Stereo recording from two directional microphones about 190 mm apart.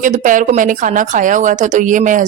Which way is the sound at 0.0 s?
40° right (ahead or behind).